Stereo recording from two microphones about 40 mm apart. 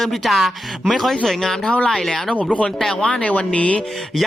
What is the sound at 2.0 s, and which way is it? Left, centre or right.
Speech, centre.